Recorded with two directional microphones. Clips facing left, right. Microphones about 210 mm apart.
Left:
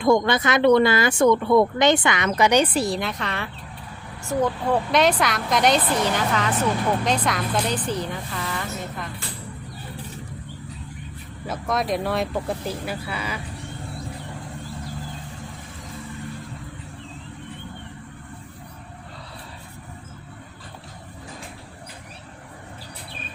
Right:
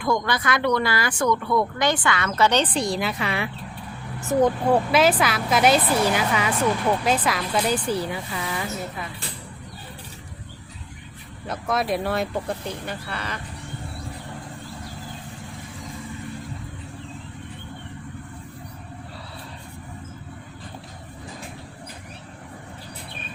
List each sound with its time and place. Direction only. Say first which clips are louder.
0.0 s speech: left 5 dB; 25° left (ahead or behind); by 9.0 s 10° right (ahead or behind)
11.4 s speech: even; centre (ahead or behind)